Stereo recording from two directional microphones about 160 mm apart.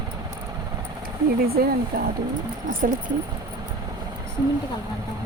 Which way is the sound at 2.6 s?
55° right (ahead or behind).